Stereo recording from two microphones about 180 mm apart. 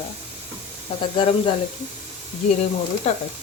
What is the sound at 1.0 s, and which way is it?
Speech, 30° left (ahead or behind).